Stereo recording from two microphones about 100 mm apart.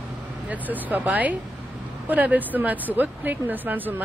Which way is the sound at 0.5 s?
15° right (ahead or behind).